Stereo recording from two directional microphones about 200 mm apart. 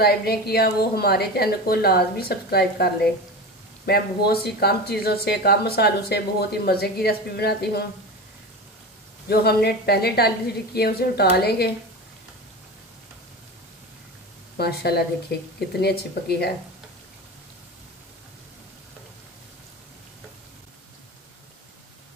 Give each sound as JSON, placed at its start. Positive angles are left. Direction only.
{"t": 0.0, "sound": "speech", "side_deg": 50}
{"t": 9.3, "sound": "speech", "side_deg": 50}
{"t": 14.6, "sound": "speech", "side_deg": 55}